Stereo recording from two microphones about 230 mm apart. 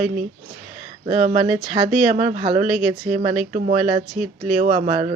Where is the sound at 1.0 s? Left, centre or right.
Right.